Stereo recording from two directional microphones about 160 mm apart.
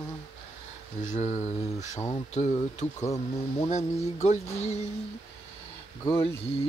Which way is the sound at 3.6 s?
45° left (ahead or behind).